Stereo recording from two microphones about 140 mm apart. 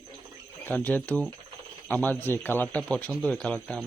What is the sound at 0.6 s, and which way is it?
Speech, 10° left (ahead or behind).